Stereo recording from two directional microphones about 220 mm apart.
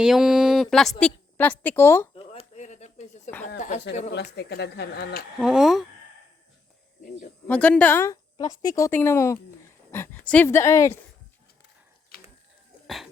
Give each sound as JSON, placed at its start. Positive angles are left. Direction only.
{"t": 0.0, "sound": "a woman's voice", "side_deg": -5}
{"t": 2.1, "sound": "a sound", "side_deg": 25}
{"t": 3.4, "sound": "speech", "side_deg": 35}
{"t": 4.1, "sound": "speech", "side_deg": 50}
{"t": 5.4, "sound": "speech", "side_deg": 0}
{"t": 7.4, "sound": "a woman's voice", "side_deg": 5}
{"t": 12.1, "sound": "mechanisms", "side_deg": 45}